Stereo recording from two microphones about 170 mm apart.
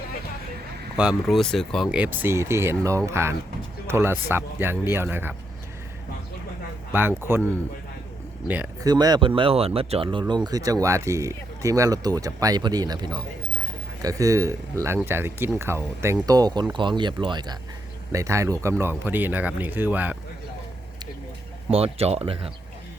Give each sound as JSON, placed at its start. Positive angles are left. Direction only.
{"t": 0.9, "sound": "speech", "side_deg": 0}
{"t": 6.9, "sound": "speech", "side_deg": -15}
{"t": 8.8, "sound": "speech", "side_deg": -20}
{"t": 21.7, "sound": "speech", "side_deg": -35}